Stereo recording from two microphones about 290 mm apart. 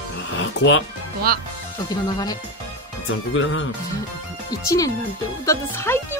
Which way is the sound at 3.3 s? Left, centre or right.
Left.